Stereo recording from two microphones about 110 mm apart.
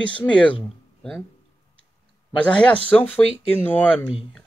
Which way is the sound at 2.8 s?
15° left (ahead or behind).